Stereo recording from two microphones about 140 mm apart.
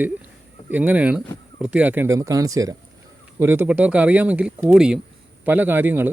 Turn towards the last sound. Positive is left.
turn(degrees=-15)  # may be behind; listen again after turning